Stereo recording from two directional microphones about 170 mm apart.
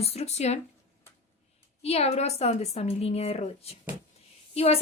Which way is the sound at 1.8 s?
35° left (ahead or behind).